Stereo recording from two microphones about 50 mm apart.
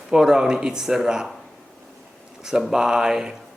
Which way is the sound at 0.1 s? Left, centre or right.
Centre.